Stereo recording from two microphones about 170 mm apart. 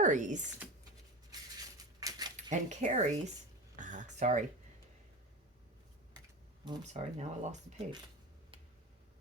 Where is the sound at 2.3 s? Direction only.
45° right (ahead or behind).